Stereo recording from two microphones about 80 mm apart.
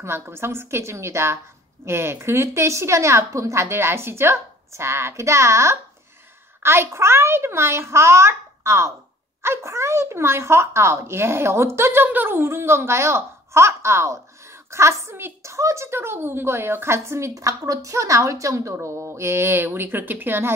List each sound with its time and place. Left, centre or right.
0.0 s speech: right